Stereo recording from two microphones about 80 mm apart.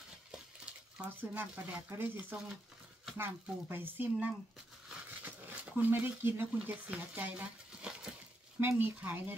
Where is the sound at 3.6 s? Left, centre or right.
Right.